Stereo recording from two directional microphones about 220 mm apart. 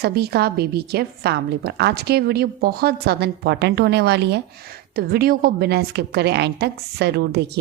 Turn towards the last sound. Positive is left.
turn(degrees=-50)  # may be behind; listen again after turning